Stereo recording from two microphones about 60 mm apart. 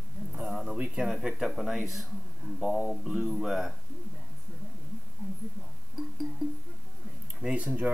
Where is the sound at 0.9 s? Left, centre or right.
Centre.